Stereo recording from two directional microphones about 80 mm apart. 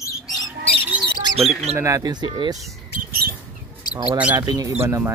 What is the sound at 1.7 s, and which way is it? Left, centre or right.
Speech, right.